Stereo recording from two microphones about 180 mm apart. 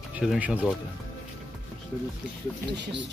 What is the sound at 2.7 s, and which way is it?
Speech, 75° right (ahead or behind).